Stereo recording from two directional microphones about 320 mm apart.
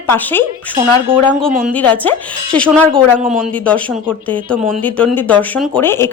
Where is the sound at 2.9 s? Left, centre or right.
Right.